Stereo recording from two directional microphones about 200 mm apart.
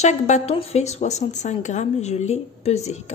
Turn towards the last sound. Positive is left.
turn(degrees=35)  # may be behind; listen again after turning